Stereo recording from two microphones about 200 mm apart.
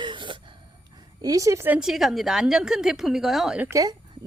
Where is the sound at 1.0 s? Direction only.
15° right (ahead or behind).